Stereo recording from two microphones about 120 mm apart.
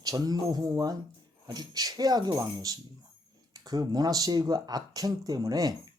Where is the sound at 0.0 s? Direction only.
30° right (ahead or behind).